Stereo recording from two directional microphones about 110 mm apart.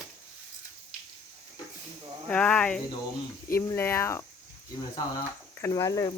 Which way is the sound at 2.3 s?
10° left (ahead or behind).